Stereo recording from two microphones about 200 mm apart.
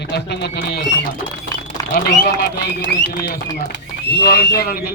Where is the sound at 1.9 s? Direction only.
55° left (ahead or behind).